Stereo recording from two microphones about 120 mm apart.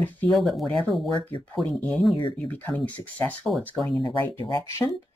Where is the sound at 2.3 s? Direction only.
15° left (ahead or behind).